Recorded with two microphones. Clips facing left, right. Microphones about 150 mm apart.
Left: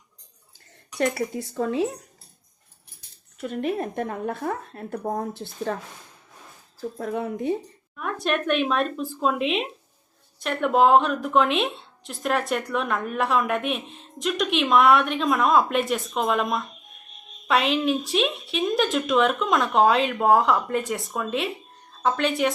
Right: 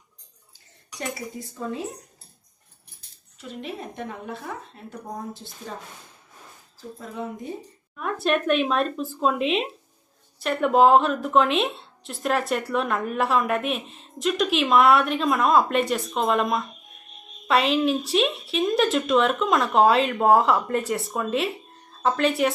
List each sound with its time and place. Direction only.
0.9 s speech: 70° left (ahead or behind)
3.3 s a woman's voice: 55° left (ahead or behind)
7.0 s a woman's voice: 65° left (ahead or behind)
7.9 s a woman's voice: centre (ahead or behind)